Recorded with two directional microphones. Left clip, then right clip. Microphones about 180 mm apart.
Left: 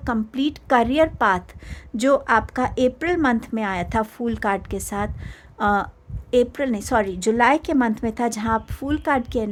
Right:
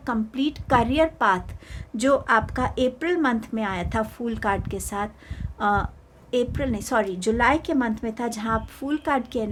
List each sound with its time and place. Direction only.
0.0 s speech: 25° left (ahead or behind)